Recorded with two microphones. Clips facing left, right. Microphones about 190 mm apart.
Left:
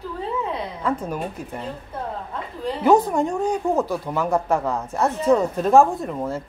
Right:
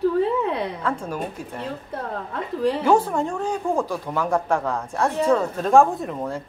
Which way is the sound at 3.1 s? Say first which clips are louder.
Left 3 dB; 10° left (ahead or behind).